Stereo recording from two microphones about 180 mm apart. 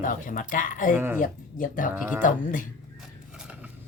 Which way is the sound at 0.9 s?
10° right (ahead or behind).